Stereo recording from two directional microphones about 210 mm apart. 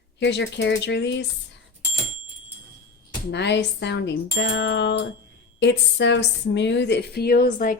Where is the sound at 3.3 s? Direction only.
55° left (ahead or behind).